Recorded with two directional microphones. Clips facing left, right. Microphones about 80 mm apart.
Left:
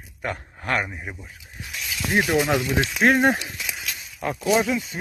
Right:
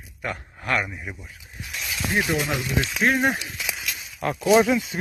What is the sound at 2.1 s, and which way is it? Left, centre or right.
Speech, centre.